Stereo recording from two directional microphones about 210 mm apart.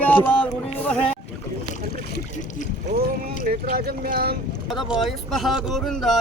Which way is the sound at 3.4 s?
40° right (ahead or behind).